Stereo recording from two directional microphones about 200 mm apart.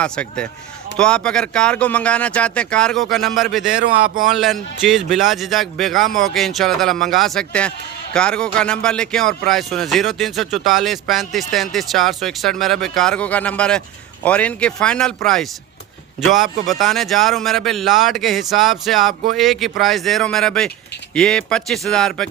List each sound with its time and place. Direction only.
0.0 s speech: 5° left (ahead or behind)
3.8 s speech: 45° right (ahead or behind)
4.3 s speech: centre (ahead or behind)